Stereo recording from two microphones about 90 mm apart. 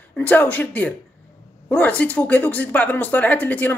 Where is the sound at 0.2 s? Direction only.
20° left (ahead or behind).